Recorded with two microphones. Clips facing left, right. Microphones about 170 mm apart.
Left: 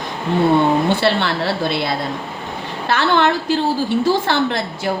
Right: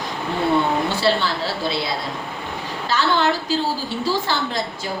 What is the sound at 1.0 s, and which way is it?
A woman's voice, 65° left (ahead or behind).